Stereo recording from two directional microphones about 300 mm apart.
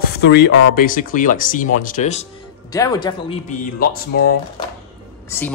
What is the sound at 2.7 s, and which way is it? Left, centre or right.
Speech, centre.